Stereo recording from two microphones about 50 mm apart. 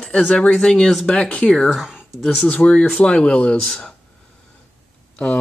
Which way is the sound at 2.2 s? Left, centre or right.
Centre.